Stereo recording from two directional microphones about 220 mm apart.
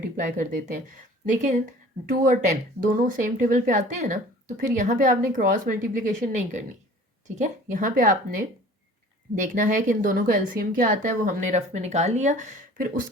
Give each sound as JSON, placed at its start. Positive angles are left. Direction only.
{"t": 0.0, "sound": "speech", "side_deg": -35}